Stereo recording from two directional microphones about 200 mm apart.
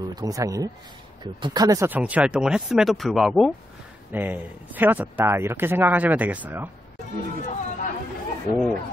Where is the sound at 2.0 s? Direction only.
5° right (ahead or behind).